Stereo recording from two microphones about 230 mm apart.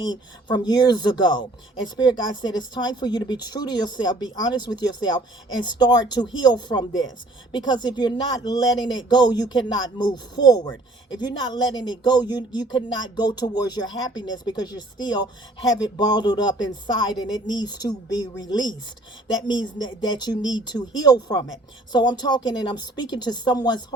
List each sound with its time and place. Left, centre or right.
0.0 s speech: centre